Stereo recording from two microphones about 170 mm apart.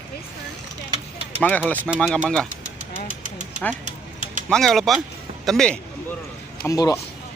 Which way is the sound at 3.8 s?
45° right (ahead or behind).